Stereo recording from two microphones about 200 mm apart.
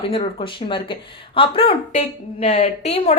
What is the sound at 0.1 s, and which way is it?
A woman's voice, 30° left (ahead or behind).